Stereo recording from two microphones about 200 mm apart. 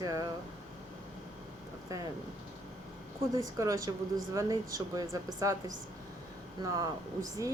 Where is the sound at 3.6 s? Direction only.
15° right (ahead or behind).